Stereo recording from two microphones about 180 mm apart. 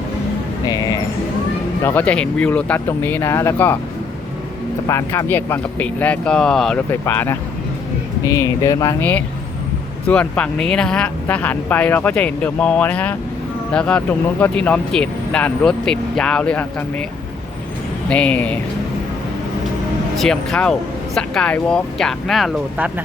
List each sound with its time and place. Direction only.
0.6 s speech: 20° left (ahead or behind)
1.8 s speech: 10° left (ahead or behind)
4.9 s speech: 15° left (ahead or behind)
10.1 s speech: 5° left (ahead or behind)
18.1 s speech: 5° left (ahead or behind)
20.1 s speech: 5° left (ahead or behind)